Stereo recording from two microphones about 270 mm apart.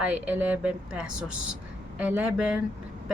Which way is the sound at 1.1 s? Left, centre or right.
Right.